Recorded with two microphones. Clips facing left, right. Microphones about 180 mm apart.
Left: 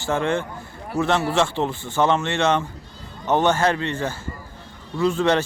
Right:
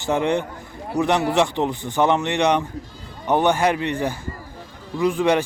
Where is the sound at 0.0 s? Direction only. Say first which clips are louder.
Right 2 dB; 20° right (ahead or behind).